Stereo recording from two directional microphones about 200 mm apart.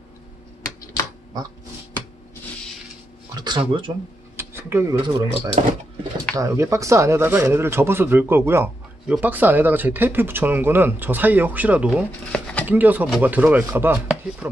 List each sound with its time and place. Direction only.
3.3 s speech: 20° right (ahead or behind)
4.4 s a sound: 10° right (ahead or behind)
5.0 s speech: 25° right (ahead or behind)
6.3 s speech: 15° right (ahead or behind)